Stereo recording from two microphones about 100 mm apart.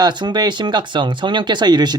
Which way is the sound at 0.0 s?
45° right (ahead or behind).